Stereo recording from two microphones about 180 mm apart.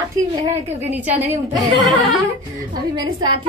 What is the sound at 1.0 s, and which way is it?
Speech, 10° right (ahead or behind).